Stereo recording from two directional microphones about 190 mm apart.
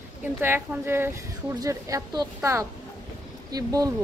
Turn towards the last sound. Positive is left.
turn(degrees=-20)  # may be behind; listen again after turning